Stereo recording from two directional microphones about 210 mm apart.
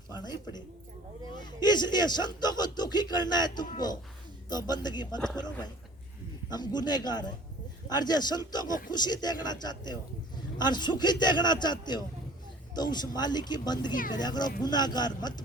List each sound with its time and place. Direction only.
0.1 s a sound: 20° left (ahead or behind)
1.6 s speech: 20° left (ahead or behind)
6.5 s speech: 20° left (ahead or behind)